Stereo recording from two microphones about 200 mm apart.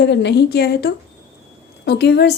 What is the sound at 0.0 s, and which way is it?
A woman's voice, 60° left (ahead or behind).